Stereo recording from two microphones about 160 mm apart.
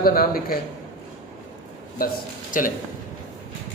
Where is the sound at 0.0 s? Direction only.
65° left (ahead or behind).